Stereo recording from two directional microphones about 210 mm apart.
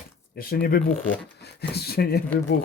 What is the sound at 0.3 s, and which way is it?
Speech, 45° left (ahead or behind).